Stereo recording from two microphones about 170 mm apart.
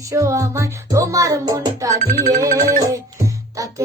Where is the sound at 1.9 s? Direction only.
45° right (ahead or behind).